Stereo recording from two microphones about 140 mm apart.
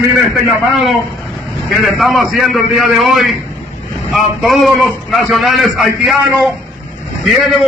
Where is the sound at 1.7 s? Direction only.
Centre (ahead or behind).